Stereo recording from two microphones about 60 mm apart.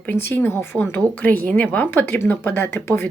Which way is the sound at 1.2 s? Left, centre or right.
Left.